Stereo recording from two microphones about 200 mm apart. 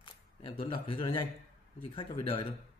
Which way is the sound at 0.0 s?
25° left (ahead or behind).